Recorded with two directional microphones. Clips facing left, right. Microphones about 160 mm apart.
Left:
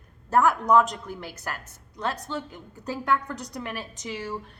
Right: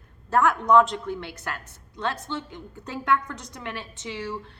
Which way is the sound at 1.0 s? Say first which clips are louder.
Right 3 dB; 40° left (ahead or behind).